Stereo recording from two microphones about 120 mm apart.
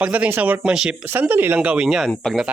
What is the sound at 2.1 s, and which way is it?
Speech, 10° left (ahead or behind).